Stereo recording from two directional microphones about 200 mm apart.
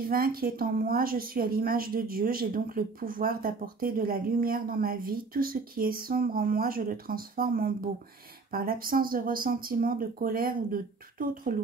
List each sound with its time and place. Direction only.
0.1 s a woman's voice: 50° right (ahead or behind)